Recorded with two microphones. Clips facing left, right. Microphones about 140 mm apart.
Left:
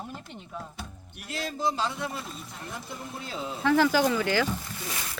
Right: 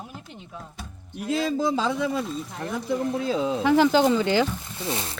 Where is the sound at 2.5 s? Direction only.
90° right.